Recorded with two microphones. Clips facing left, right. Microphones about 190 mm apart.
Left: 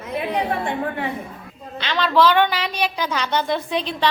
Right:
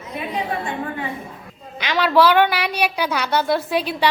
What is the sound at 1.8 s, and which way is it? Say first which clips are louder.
A woman's voice: right 1 dB; 10° right (ahead or behind).